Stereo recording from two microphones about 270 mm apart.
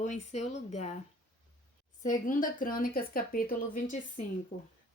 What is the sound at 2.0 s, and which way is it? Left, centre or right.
A woman's voice, left.